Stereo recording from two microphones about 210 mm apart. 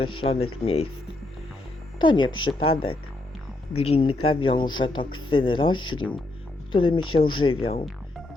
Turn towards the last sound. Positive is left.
turn(degrees=25)  # may be behind; listen again after turning